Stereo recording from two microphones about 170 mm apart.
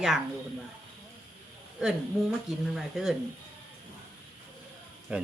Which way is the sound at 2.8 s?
Centre (ahead or behind).